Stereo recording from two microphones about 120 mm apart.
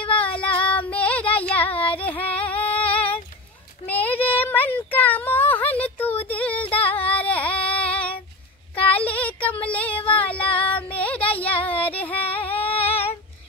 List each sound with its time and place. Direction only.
0.2 s female singing: 10° left (ahead or behind)
1.3 s a sound: 15° left (ahead or behind)
1.9 s music: 15° left (ahead or behind)
2.9 s female singing: 10° left (ahead or behind)
3.9 s child singing: 15° left (ahead or behind)
7.0 s a sound: 10° left (ahead or behind)
8.7 s child singing: 10° left (ahead or behind)
9.9 s female singing: 50° left (ahead or behind)
10.2 s female singing: 10° left (ahead or behind)
12.4 s a sound: 15° left (ahead or behind)